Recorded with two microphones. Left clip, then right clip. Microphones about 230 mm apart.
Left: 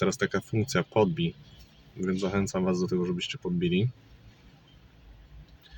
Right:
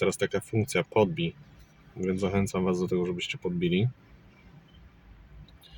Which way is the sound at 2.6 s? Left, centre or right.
Centre.